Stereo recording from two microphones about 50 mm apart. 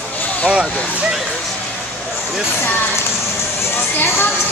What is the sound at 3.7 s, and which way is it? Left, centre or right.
Music, left.